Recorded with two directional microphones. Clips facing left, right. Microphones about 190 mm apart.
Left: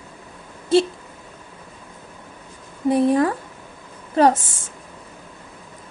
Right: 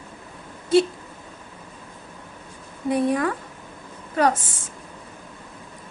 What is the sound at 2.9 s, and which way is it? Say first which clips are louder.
A woman's voice: left 4 dB; 30° left (ahead or behind).